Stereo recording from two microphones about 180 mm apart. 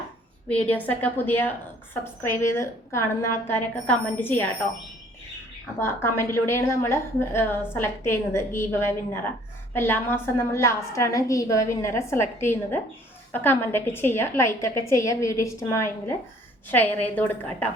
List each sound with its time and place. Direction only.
0.4 s a woman's voice: 5° left (ahead or behind)
5.8 s a woman's voice: 15° left (ahead or behind)